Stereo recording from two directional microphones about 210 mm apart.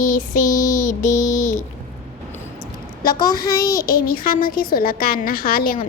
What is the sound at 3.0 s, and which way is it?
Speech, 20° left (ahead or behind).